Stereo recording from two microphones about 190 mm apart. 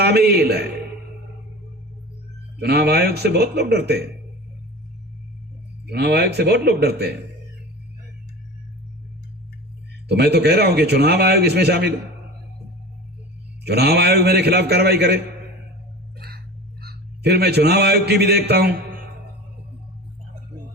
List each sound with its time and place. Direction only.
0.0 s a man's voice: 60° right (ahead or behind)
2.6 s a man's voice: 60° right (ahead or behind)
5.8 s a man's voice: 60° right (ahead or behind)
10.1 s a man's voice: 60° right (ahead or behind)
13.7 s a man's voice: 60° right (ahead or behind)
16.1 s a sound: 55° right (ahead or behind)
16.8 s a man's voice: 55° right (ahead or behind)